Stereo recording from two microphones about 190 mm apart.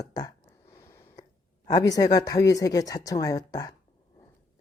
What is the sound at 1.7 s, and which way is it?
A woman's voice, 20° left (ahead or behind).